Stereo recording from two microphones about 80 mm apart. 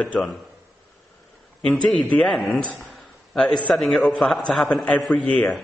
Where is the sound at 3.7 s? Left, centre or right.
Centre.